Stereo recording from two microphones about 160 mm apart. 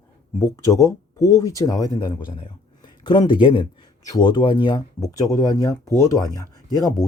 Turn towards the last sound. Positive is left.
turn(degrees=20)  # may be behind; listen again after turning